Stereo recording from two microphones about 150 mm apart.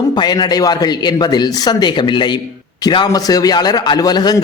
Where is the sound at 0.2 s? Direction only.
30° left (ahead or behind).